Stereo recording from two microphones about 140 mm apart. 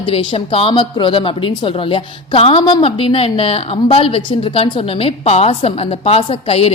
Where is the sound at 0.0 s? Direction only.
40° left (ahead or behind).